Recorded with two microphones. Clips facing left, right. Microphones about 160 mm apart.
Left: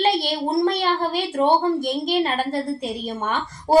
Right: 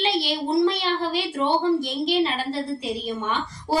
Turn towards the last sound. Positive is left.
turn(degrees=45)  # may be behind; listen again after turning